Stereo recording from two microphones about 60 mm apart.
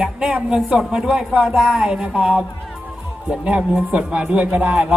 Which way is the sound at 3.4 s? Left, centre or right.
Centre.